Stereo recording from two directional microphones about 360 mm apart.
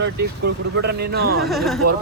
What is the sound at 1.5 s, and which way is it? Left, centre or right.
Speech, centre.